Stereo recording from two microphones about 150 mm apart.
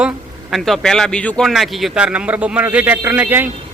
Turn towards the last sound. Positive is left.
turn(degrees=-10)  # may be behind; listen again after turning